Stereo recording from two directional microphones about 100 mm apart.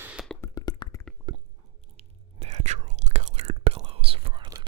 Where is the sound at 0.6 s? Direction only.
45° left (ahead or behind).